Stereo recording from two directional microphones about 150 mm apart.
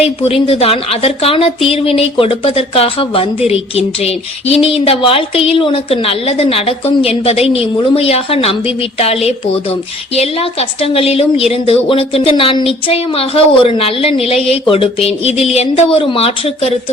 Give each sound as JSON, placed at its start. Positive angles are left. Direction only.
{"t": 0.0, "sound": "a woman's voice", "side_deg": 40}
{"t": 10.2, "sound": "a woman's voice", "side_deg": 40}